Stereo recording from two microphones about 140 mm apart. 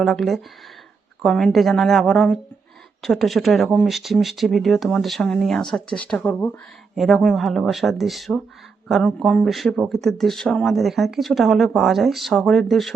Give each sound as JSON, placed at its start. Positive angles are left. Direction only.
{"t": 0.0, "sound": "speech", "side_deg": 0}